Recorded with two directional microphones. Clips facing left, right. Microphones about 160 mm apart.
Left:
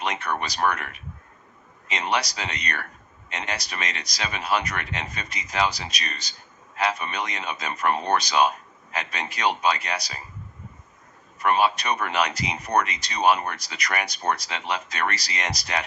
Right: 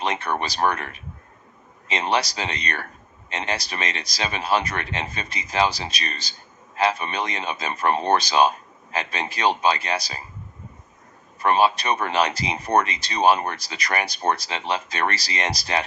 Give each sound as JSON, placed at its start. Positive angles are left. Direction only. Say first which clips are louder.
{"t": 0.0, "sound": "speech", "louder": "right 3 dB", "side_deg": -30}
{"t": 11.3, "sound": "speech", "louder": "right 2 dB", "side_deg": -30}